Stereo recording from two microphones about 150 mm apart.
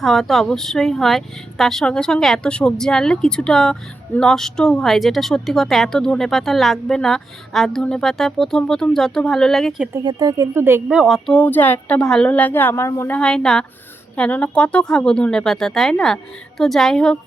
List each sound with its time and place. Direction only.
0.0 s speech: centre (ahead or behind)
10.0 s speech: 30° right (ahead or behind)
10.8 s speech: 5° right (ahead or behind)
11.3 s a woman's voice: 10° left (ahead or behind)
13.1 s speech: 5° left (ahead or behind)